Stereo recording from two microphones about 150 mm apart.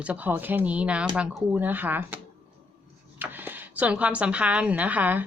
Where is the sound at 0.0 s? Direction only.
10° right (ahead or behind).